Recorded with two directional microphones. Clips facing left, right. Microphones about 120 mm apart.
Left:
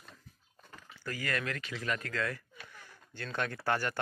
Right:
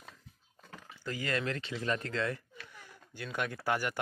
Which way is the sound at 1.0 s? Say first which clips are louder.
Right 2 dB; 20° right (ahead or behind).